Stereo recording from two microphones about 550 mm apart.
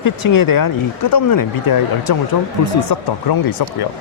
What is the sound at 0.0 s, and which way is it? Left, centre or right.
Speech, left.